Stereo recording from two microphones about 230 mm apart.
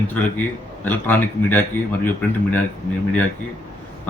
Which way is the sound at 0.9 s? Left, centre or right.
Centre.